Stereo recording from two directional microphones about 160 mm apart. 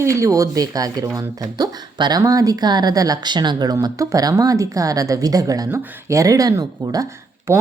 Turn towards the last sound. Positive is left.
turn(degrees=-15)  # may be behind; listen again after turning